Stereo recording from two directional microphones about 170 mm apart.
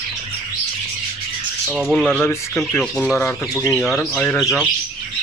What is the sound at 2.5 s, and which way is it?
Speech, 5° left (ahead or behind).